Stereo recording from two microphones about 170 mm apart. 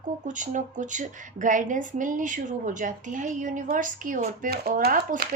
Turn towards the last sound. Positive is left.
turn(degrees=-65)  # may be behind; listen again after turning